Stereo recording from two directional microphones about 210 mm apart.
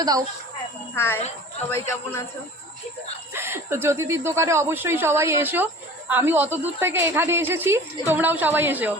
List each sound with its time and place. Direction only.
0.0 s speech: 15° right (ahead or behind)
0.9 s speech: 10° left (ahead or behind)
3.3 s speech: 10° right (ahead or behind)